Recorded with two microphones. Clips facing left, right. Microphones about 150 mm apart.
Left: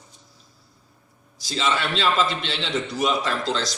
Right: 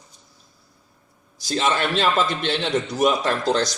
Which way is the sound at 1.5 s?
50° right (ahead or behind).